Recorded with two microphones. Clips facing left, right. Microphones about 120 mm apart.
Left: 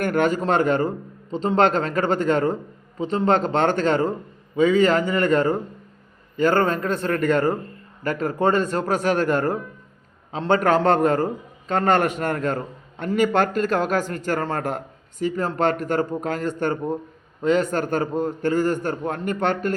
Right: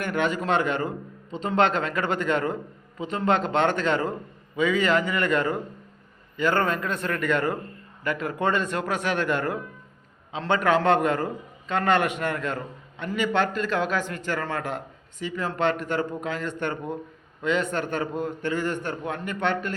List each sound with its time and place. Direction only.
0.0 s a man's voice: 45° left (ahead or behind)